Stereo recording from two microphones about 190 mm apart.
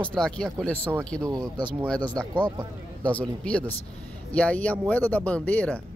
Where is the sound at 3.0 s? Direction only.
5° left (ahead or behind).